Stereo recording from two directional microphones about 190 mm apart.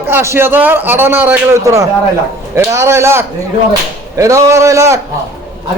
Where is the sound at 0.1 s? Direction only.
15° right (ahead or behind).